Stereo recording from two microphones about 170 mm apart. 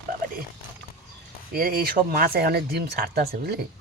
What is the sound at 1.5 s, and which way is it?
Speech, 60° right (ahead or behind).